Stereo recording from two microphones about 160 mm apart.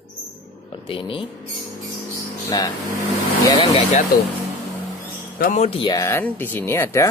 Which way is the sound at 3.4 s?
35° left (ahead or behind).